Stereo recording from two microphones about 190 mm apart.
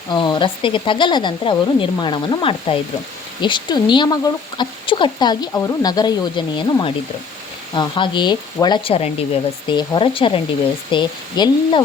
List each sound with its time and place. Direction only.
0.1 s speech: 25° left (ahead or behind)